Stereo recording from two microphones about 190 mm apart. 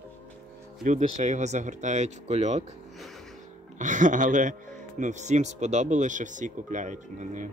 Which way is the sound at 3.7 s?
40° right (ahead or behind).